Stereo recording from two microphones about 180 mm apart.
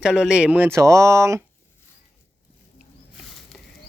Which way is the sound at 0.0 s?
5° right (ahead or behind).